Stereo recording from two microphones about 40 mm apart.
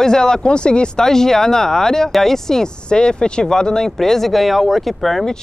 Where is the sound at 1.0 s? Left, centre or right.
Centre.